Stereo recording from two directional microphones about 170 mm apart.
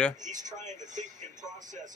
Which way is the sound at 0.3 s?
45° right (ahead or behind).